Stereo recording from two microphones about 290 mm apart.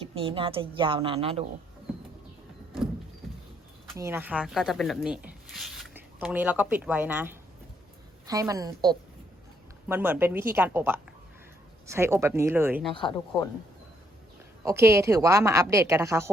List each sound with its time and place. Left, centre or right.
0.0 s a woman's voice: centre
3.9 s a woman's voice: centre
12.9 s speech: centre
14.6 s a woman's voice: centre